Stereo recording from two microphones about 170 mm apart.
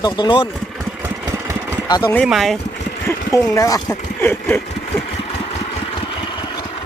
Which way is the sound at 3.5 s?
20° left (ahead or behind).